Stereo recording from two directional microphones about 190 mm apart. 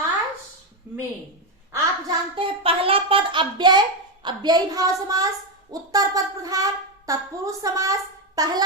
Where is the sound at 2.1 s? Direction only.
25° right (ahead or behind).